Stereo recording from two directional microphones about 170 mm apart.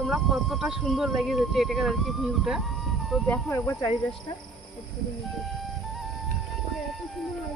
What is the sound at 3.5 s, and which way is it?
Speech, 20° left (ahead or behind).